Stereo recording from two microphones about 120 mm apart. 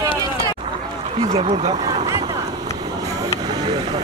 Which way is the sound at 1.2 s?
60° right (ahead or behind).